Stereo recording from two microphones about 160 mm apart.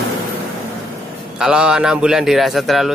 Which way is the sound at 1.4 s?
5° right (ahead or behind).